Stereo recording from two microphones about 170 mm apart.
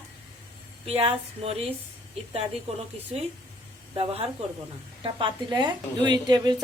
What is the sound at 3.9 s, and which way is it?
A woman's voice, 35° right (ahead or behind).